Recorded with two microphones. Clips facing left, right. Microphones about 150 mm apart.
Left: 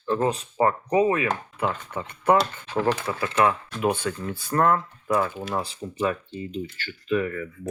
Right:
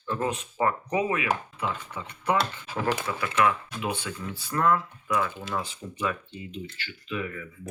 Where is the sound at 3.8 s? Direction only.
50° left (ahead or behind).